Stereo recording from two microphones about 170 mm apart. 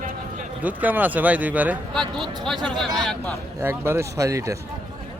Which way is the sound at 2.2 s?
30° right (ahead or behind).